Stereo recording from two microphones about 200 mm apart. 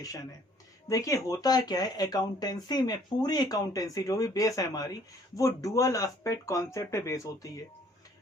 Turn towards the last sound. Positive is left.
turn(degrees=15)  # may be behind; listen again after turning